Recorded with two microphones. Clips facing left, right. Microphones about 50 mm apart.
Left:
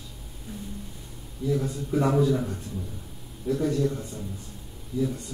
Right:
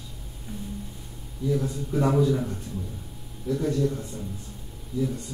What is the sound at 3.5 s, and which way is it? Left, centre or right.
Speech, left.